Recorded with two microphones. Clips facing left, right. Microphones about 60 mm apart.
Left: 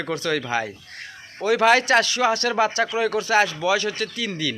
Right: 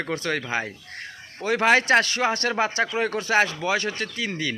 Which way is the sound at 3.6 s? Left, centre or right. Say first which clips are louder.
Left 3 dB; right.